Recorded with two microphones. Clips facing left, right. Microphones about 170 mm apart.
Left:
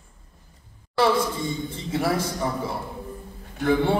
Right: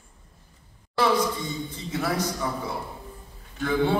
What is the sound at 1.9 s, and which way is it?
Speech, 30° left (ahead or behind).